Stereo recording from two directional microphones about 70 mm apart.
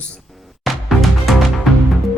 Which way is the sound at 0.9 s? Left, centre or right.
Centre.